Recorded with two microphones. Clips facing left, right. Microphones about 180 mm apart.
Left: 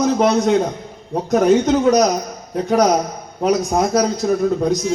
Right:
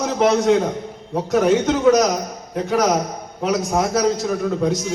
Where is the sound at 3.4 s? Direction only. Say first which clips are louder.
Left 3 dB; 35° left (ahead or behind).